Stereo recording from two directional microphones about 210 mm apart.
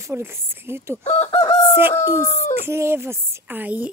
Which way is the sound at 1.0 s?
30° left (ahead or behind).